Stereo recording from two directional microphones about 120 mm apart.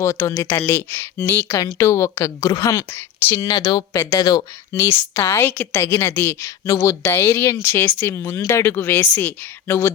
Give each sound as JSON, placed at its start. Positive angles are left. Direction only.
{"t": 0.0, "sound": "speech", "side_deg": 25}